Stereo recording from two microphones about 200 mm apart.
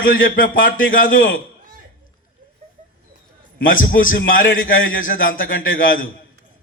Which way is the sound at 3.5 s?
45° left (ahead or behind).